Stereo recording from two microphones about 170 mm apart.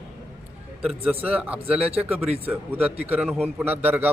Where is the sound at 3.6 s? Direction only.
10° right (ahead or behind).